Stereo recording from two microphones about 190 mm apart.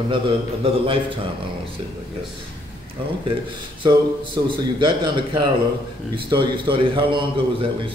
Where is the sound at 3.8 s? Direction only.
25° right (ahead or behind).